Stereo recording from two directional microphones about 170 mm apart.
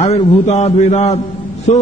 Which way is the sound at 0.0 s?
40° left (ahead or behind).